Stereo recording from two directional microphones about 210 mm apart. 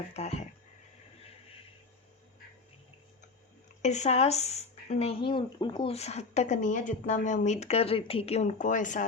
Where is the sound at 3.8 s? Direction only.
35° left (ahead or behind).